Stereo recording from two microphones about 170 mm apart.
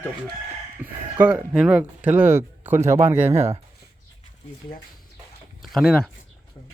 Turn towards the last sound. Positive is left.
turn(degrees=0)  # may be behind; listen again after turning